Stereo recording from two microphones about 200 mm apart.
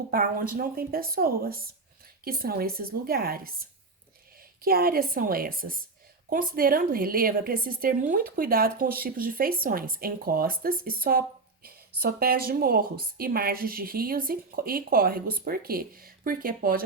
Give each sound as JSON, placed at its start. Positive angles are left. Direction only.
{"t": 0.1, "sound": "speech", "side_deg": -45}
{"t": 4.6, "sound": "speech", "side_deg": -50}